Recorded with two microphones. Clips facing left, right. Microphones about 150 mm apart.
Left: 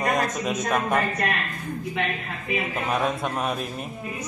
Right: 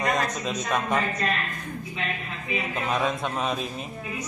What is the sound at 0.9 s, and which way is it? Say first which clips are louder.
Speech: left 2 dB; 60° left (ahead or behind).